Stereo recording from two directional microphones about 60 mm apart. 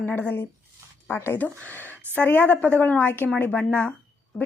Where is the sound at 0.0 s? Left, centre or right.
Left.